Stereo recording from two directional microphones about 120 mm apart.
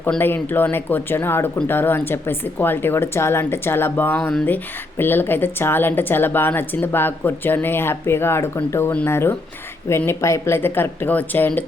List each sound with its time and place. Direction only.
0.2 s a woman's voice: 15° left (ahead or behind)